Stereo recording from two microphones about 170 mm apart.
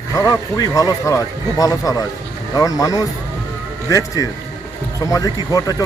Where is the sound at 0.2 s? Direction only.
20° left (ahead or behind).